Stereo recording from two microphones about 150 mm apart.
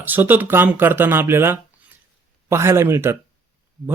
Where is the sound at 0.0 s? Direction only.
10° right (ahead or behind).